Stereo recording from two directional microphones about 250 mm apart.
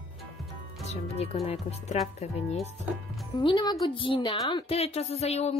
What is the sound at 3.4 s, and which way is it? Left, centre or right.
A woman's voice, centre.